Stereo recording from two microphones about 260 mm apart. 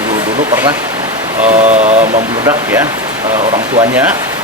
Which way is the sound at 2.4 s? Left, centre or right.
Centre.